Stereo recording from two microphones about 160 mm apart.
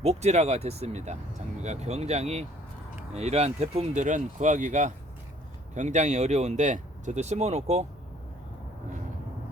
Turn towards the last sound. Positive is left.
turn(degrees=-45)  # may be behind; listen again after turning